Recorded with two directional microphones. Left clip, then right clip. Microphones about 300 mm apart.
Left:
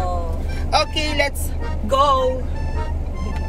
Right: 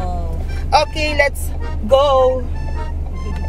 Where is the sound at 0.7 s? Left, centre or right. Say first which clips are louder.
Right 4 dB; centre.